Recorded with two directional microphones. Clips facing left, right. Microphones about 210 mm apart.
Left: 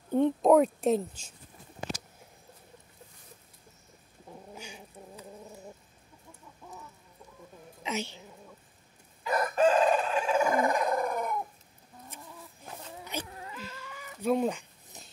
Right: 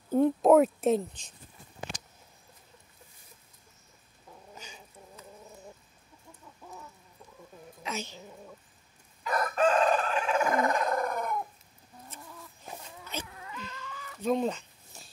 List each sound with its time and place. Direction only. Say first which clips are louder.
0.1 s speech: right 1 dB; 5° right (ahead or behind)
4.6 s cat: left 4 dB; 10° left (ahead or behind)
6.6 s chicken: even; 5° right (ahead or behind)
7.8 s a woman's voice: left 3 dB; 15° left (ahead or behind)
9.2 s chicken: left 2 dB; 25° left (ahead or behind)
9.8 s chicken: left 1 dB; 10° left (ahead or behind)
10.5 s dog: left 1 dB; 10° left (ahead or behind)
12.9 s insect: left 3 dB; 15° left (ahead or behind)
13.3 s insect: left 2 dB; 30° left (ahead or behind)
13.6 s chicken: even; 10° left (ahead or behind)